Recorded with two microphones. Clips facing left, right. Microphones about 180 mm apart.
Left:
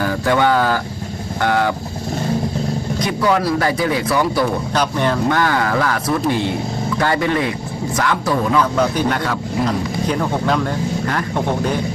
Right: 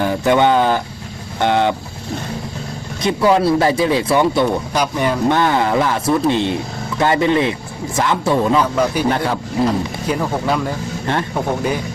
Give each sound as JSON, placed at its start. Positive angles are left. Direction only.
{"t": 0.0, "sound": "speech", "side_deg": -20}
{"t": 3.0, "sound": "speech", "side_deg": -25}
{"t": 4.7, "sound": "speech", "side_deg": -10}
{"t": 5.3, "sound": "speech", "side_deg": -25}
{"t": 8.7, "sound": "speech", "side_deg": -10}
{"t": 9.0, "sound": "speech", "side_deg": -25}
{"t": 9.6, "sound": "speech", "side_deg": -5}
{"t": 11.0, "sound": "speech", "side_deg": -25}
{"t": 11.3, "sound": "speech", "side_deg": -10}